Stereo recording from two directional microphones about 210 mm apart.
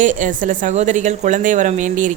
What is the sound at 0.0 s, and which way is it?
A woman's voice, 40° right (ahead or behind).